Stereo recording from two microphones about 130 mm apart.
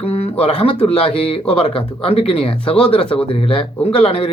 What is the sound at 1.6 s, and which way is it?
Speech, 50° left (ahead or behind).